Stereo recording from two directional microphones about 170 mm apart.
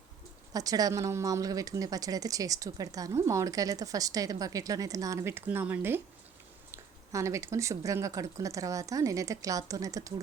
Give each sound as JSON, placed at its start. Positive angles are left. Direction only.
{"t": 0.5, "sound": "speech", "side_deg": -20}